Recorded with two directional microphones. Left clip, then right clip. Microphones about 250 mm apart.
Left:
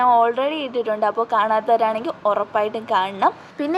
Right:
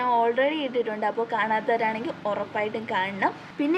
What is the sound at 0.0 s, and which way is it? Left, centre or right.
A woman's voice, left.